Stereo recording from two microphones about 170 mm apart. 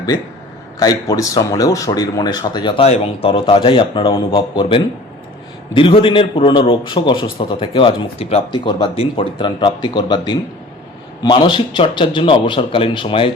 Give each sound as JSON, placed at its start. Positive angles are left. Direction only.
{"t": 0.8, "sound": "a man's voice", "side_deg": 20}